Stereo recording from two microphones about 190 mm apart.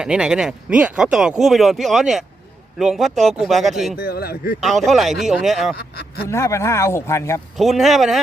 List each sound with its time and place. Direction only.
0.0 s speech: 5° right (ahead or behind)
3.9 s speech: 55° left (ahead or behind)
4.6 s speech: centre (ahead or behind)
5.7 s speech: 60° left (ahead or behind)
6.2 s speech: 15° left (ahead or behind)
7.5 s speech: centre (ahead or behind)